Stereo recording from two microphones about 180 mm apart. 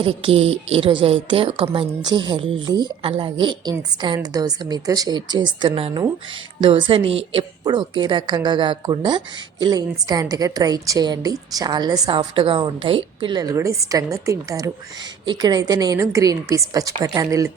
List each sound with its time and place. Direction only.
0.0 s a woman's voice: 30° right (ahead or behind)